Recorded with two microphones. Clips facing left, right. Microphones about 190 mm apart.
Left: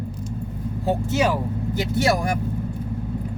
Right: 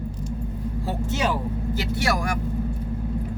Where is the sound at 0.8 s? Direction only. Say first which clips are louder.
Left 5 dB; 15° left (ahead or behind).